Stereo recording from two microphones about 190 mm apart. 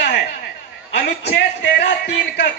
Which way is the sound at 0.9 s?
60° left (ahead or behind).